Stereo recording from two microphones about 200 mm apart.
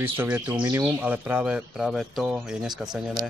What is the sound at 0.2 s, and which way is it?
Speech, 10° right (ahead or behind).